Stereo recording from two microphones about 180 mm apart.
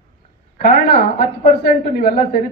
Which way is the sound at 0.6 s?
55° left (ahead or behind).